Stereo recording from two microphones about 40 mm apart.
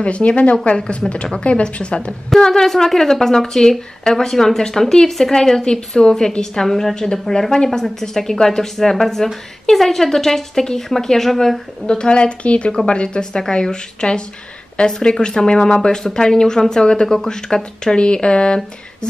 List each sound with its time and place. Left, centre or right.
0.0 s a woman's voice: left
1.0 s a woman's voice: centre
2.2 s a woman's voice: centre
11.8 s a woman's voice: left